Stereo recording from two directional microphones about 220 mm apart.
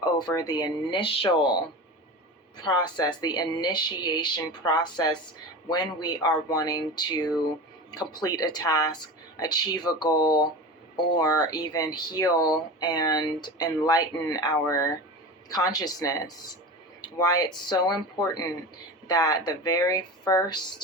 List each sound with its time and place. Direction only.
0.0 s speech: 20° left (ahead or behind)
2.6 s speech: 20° left (ahead or behind)